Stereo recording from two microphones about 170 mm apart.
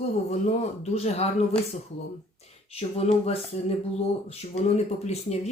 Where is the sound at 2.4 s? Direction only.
40° left (ahead or behind).